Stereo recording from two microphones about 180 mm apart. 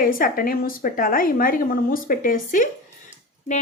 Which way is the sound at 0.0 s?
50° left (ahead or behind).